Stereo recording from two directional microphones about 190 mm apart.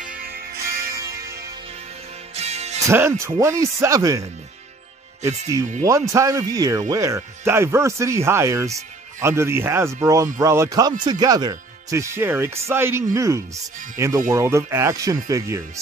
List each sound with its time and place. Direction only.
2.3 s music: 35° right (ahead or behind)
2.9 s speech: 15° right (ahead or behind)
5.8 s speech: 15° right (ahead or behind)